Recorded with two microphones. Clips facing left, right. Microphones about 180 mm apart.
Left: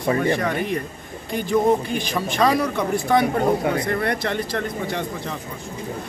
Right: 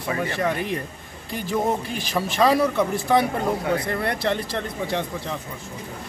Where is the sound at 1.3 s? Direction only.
5° right (ahead or behind).